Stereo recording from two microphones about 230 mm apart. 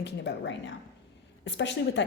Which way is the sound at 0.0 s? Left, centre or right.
Left.